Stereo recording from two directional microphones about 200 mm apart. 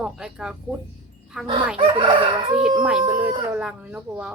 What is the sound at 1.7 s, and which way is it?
Chicken, 25° right (ahead or behind).